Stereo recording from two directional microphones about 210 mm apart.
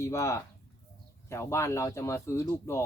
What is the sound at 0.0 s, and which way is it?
Speech, 15° left (ahead or behind).